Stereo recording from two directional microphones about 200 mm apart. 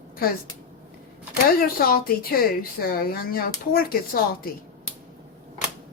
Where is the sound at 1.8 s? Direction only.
45° left (ahead or behind).